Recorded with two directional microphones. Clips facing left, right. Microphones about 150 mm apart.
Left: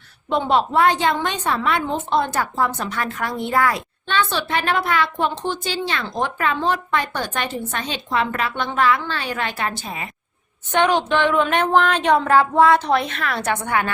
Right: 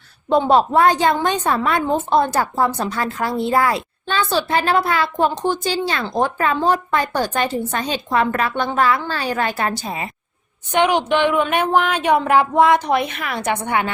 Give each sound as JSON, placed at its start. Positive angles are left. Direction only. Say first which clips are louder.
{"t": 0.3, "sound": "a woman's voice", "louder": "right 4 dB", "side_deg": -40}
{"t": 10.7, "sound": "speech", "louder": "right 1 dB", "side_deg": -15}